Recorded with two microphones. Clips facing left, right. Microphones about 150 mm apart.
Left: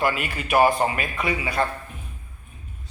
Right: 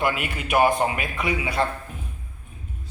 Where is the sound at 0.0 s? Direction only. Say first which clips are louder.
Left 1 dB; 15° right (ahead or behind).